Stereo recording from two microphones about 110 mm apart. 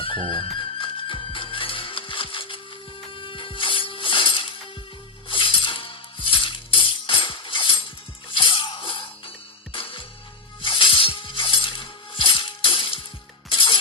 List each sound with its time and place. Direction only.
0.0 s music: 50° left (ahead or behind)